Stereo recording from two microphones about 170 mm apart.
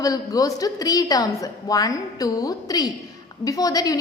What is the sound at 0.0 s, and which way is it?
A woman's voice, 20° left (ahead or behind).